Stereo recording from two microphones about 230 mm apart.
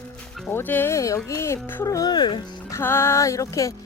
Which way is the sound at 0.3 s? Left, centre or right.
Centre.